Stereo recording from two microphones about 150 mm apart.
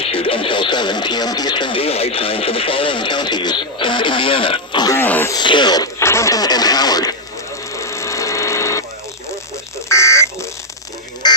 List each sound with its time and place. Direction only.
0.0 s speech: 40° left (ahead or behind)
4.9 s speech: 15° left (ahead or behind)
5.3 s speech: 30° left (ahead or behind)
7.7 s a sound: 20° left (ahead or behind)
9.9 s buzzer: 20° left (ahead or behind)
11.2 s a sound: 30° left (ahead or behind)